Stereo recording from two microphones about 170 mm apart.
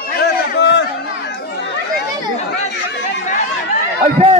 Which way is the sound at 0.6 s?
90° left.